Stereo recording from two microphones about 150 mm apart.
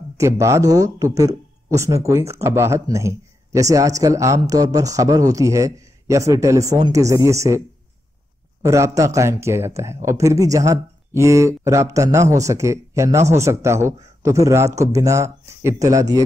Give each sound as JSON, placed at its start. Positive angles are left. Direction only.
{"t": 0.2, "sound": "speech", "side_deg": -20}
{"t": 8.6, "sound": "speech", "side_deg": -20}